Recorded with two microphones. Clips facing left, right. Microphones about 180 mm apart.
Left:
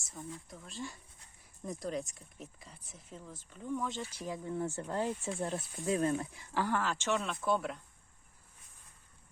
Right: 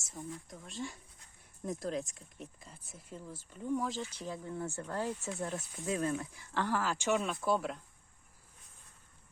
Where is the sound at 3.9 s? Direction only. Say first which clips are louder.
Right 1 dB; 5° left (ahead or behind).